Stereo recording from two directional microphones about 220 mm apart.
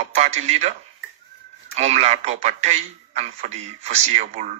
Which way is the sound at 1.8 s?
30° right (ahead or behind).